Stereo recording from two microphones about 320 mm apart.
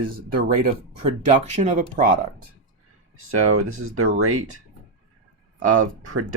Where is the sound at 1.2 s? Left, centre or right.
Right.